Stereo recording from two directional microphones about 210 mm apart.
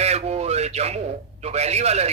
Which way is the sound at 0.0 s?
30° right (ahead or behind).